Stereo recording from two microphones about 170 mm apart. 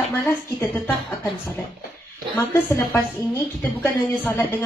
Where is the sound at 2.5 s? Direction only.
15° left (ahead or behind).